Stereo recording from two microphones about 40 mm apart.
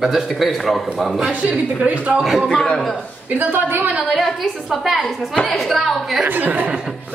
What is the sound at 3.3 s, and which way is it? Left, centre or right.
Speech, right.